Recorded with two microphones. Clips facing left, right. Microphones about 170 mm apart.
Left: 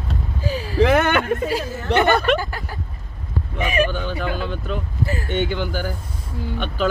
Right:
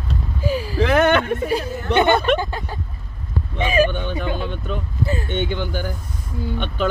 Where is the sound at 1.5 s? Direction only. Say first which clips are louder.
Right 1 dB; 20° right (ahead or behind).